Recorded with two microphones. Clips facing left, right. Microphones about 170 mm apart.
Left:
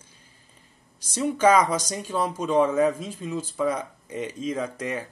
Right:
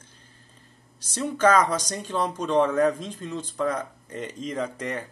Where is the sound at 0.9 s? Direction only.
10° left (ahead or behind).